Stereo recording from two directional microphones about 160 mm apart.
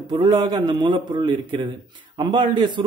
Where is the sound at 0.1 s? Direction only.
30° right (ahead or behind).